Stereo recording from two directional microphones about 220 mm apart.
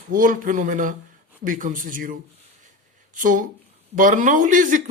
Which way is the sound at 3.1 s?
35° right (ahead or behind).